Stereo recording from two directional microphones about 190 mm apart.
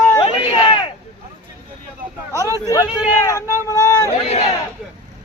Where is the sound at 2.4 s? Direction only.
15° left (ahead or behind).